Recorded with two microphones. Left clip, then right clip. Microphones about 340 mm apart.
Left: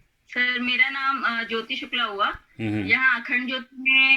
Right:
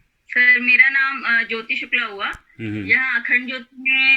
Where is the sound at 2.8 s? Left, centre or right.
Centre.